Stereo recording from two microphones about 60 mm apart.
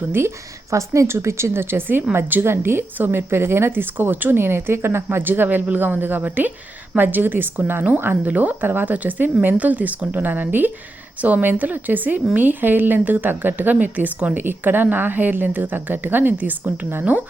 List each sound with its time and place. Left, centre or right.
0.1 s a woman's voice: right